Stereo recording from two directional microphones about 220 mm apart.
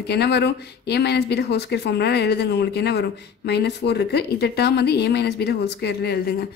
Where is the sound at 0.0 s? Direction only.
50° left (ahead or behind).